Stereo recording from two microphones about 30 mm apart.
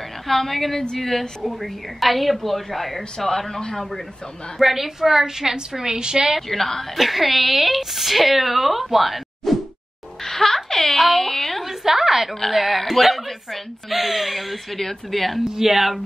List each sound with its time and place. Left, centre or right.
0.3 s a woman's voice: centre
3.3 s a woman's voice: centre
4.6 s a woman's voice: centre; by 6.2 s right
6.5 s a woman's voice: centre
7.0 s a woman's voice: centre
9.5 s whoosh: centre
10.2 s a sound: centre
11.8 s a sound: centre
12.4 s a woman's voice: centre
14.8 s a woman's voice: centre
15.4 s a woman's voice: centre